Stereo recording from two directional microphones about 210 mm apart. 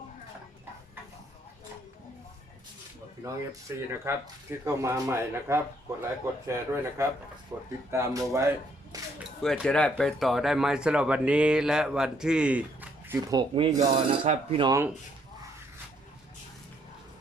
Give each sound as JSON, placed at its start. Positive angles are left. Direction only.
{"t": 3.2, "sound": "speech", "side_deg": -15}
{"t": 9.4, "sound": "speech", "side_deg": 5}
{"t": 13.3, "sound": "speech", "side_deg": -25}